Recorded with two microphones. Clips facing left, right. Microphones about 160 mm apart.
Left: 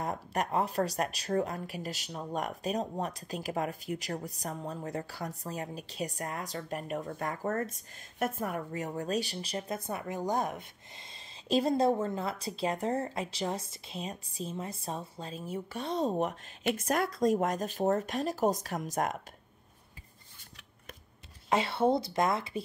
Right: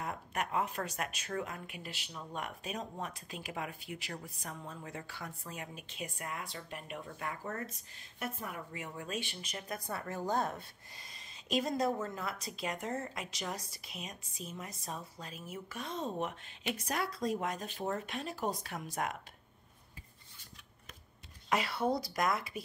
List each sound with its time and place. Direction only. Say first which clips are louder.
0.0 s speech: left 5 dB; 35° left (ahead or behind)
21.5 s speech: left 5 dB; 25° left (ahead or behind)